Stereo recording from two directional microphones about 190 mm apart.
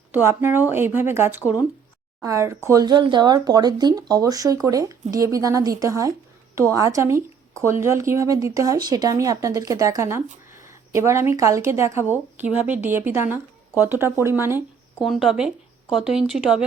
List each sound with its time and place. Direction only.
0.1 s a woman's voice: 10° right (ahead or behind)
15.0 s speech: centre (ahead or behind)